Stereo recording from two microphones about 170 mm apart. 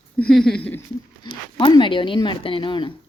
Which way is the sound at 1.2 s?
25° left (ahead or behind).